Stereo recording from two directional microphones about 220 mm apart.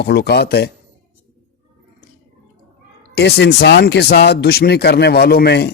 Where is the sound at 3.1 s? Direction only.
50° left (ahead or behind).